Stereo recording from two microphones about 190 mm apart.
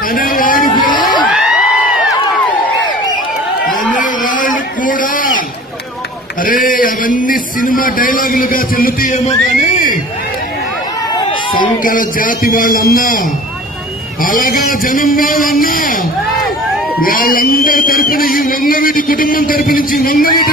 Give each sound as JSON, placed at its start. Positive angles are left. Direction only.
{"t": 0.1, "sound": "vehicle", "side_deg": 45}
{"t": 0.8, "sound": "crowd", "side_deg": 45}
{"t": 1.3, "sound": "crowd", "side_deg": -5}
{"t": 3.9, "sound": "a sound", "side_deg": 45}
{"t": 6.4, "sound": "a man's voice", "side_deg": 45}
{"t": 11.8, "sound": "speech", "side_deg": 45}
{"t": 14.2, "sound": "speech", "side_deg": 45}
{"t": 17.0, "sound": "speech", "side_deg": 50}